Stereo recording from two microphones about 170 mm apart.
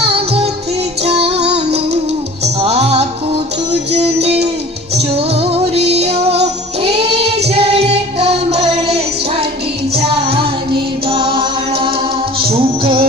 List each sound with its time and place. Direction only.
0.0 s music: 35° right (ahead or behind)
5.3 s music: 35° right (ahead or behind)